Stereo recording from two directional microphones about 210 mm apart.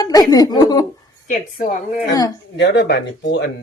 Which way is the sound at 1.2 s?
40° left (ahead or behind).